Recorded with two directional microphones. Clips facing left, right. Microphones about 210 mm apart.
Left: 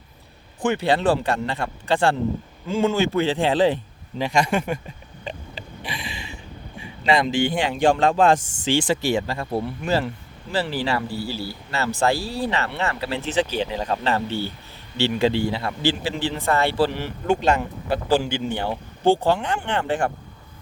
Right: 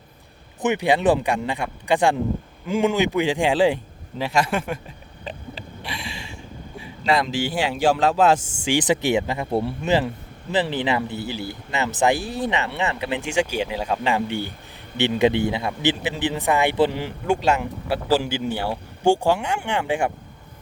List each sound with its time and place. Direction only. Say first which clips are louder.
0.6 s a man's voice: right 1 dB; 15° right (ahead or behind)
17.2 s speech: left 1 dB; 5° right (ahead or behind)